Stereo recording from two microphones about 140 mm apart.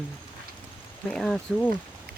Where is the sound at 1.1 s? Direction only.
5° left (ahead or behind).